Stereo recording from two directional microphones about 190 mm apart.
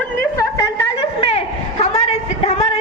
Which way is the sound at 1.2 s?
30° left (ahead or behind).